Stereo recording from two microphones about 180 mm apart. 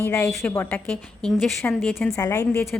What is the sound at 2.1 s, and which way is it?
Speech, 15° left (ahead or behind).